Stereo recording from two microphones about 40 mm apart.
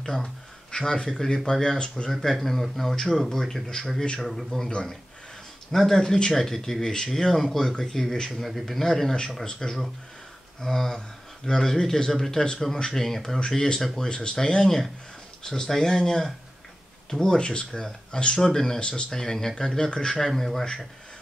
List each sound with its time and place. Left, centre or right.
0.0 s a sound: centre
0.7 s speech: left
2.0 s a man's voice: centre
4.6 s a man's voice: centre
18.8 s speech: left
19.0 s speech: centre
20.2 s speech: centre